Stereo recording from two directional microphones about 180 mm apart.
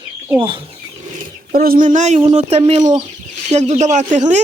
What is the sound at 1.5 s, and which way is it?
Speech, 55° right (ahead or behind).